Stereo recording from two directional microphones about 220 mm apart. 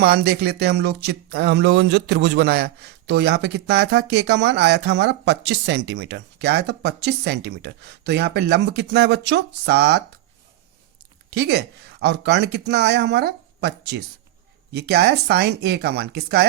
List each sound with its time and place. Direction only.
0.0 s speech: 45° right (ahead or behind)
11.3 s speech: 45° right (ahead or behind)